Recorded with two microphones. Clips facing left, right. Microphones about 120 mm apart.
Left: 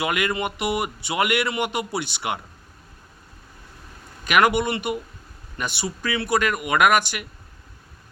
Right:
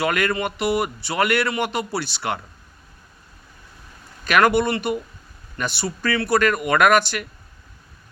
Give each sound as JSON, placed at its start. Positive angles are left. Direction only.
{"t": 0.0, "sound": "speech", "side_deg": 15}
{"t": 4.2, "sound": "speech", "side_deg": 15}